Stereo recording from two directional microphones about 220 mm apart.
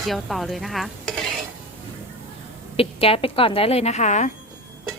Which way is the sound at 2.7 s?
25° left (ahead or behind).